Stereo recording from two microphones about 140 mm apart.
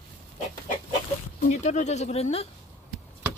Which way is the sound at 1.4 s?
60° left (ahead or behind).